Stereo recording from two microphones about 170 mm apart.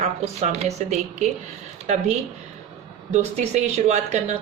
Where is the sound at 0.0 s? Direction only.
40° right (ahead or behind).